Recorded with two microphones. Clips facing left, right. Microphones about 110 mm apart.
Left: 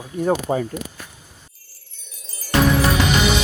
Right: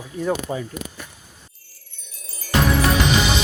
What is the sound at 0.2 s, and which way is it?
Speech, 40° left (ahead or behind).